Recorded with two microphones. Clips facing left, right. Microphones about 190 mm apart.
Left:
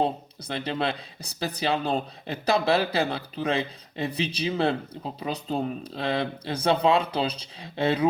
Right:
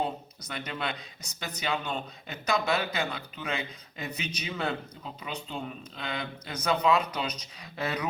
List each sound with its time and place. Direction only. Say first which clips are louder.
0.0 s speech: left 6 dB; 30° left (ahead or behind)